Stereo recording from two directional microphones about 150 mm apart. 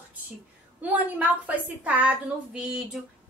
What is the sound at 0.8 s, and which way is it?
A woman's voice, 10° right (ahead or behind).